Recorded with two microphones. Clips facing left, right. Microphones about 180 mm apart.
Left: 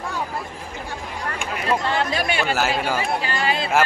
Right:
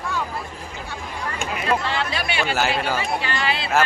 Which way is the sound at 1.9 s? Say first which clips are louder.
Left 3 dB; 45° left (ahead or behind).